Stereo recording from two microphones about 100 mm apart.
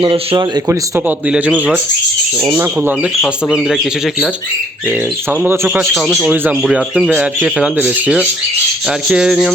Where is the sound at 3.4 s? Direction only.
10° left (ahead or behind).